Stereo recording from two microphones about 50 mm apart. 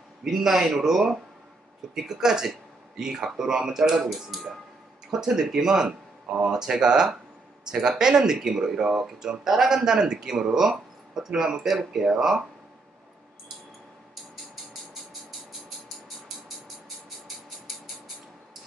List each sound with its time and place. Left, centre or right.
0.2 s speech: centre